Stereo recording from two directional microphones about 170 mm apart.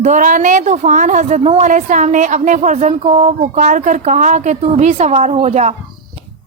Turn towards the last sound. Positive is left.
turn(degrees=-40)  # may be behind; listen again after turning